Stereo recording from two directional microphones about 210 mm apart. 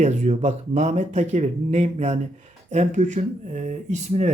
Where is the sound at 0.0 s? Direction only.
35° right (ahead or behind).